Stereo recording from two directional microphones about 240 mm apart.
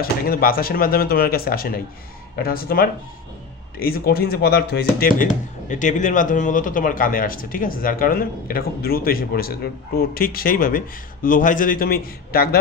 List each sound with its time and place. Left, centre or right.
0.0 s speech: left